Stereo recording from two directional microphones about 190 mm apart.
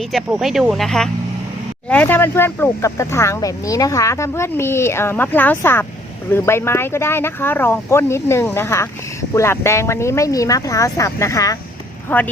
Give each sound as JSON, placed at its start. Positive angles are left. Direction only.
{"t": 0.1, "sound": "speech", "side_deg": 0}